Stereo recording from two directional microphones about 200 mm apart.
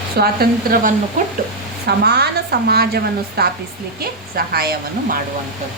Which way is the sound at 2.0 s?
55° right (ahead or behind).